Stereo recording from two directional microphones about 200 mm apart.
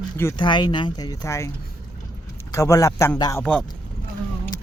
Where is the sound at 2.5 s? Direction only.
15° left (ahead or behind).